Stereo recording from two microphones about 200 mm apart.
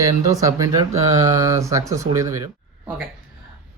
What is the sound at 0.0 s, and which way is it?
Speech, 15° right (ahead or behind).